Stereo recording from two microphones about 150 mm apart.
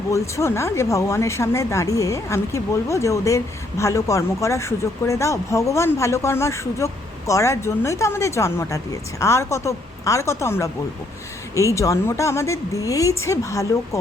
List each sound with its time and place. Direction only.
0.1 s speech: 20° left (ahead or behind)